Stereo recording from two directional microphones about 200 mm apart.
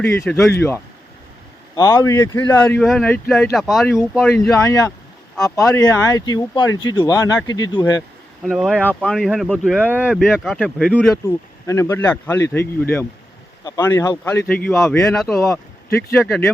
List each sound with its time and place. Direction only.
0.0 s speech: 10° left (ahead or behind)
2.5 s speech: 10° left (ahead or behind)
8.4 s speech: centre (ahead or behind)
11.1 s speech: 15° left (ahead or behind)
15.1 s speech: centre (ahead or behind)
15.4 s speech: 15° left (ahead or behind)